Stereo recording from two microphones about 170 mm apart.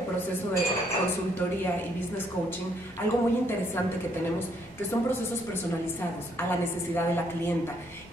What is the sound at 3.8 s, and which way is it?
Speech, 15° left (ahead or behind).